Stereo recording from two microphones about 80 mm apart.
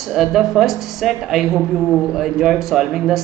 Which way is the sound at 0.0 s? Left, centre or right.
Centre.